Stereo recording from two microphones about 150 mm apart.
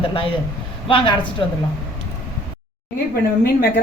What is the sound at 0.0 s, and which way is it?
A man's voice, 35° left (ahead or behind).